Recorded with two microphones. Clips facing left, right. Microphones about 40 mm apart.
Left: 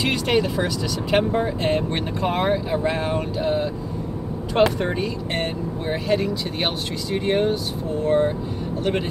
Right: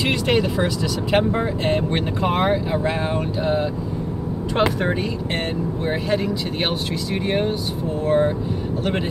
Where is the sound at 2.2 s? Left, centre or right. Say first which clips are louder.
Right 1 dB; centre.